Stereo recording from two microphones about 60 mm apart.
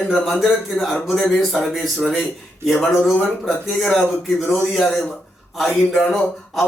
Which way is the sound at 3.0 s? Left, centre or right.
Left.